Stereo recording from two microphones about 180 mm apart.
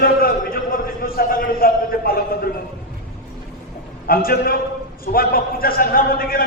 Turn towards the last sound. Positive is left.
turn(degrees=55)  # may be behind; listen again after turning